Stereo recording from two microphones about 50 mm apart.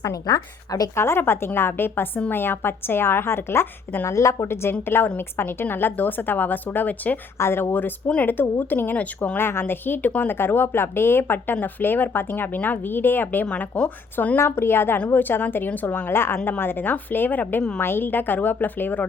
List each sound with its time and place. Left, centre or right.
0.9 s a woman's voice: left
4.1 s a woman's voice: left
4.4 s a woman's voice: left
7.3 s a woman's voice: left
9.0 s a woman's voice: left
9.4 s a woman's voice: left
13.4 s a woman's voice: left
14.3 s a woman's voice: left
16.0 s a woman's voice: left
17.7 s speech: left